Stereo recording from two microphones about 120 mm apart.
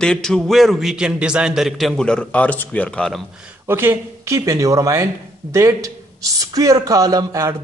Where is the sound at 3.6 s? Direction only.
20° right (ahead or behind).